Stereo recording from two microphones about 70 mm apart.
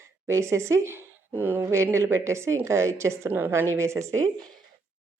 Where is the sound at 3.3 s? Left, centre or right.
Right.